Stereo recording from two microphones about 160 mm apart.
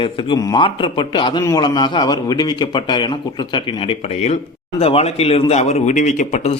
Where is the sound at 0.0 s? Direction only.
30° left (ahead or behind).